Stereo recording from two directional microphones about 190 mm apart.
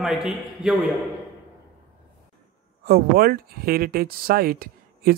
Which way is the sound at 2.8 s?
50° right (ahead or behind).